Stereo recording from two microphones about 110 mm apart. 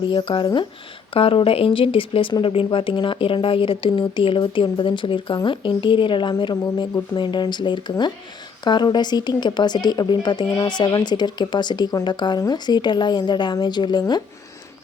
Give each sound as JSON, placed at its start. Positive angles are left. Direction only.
{"t": 0.1, "sound": "speech", "side_deg": 50}